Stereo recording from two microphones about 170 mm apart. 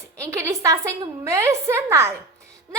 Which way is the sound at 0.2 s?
15° right (ahead or behind).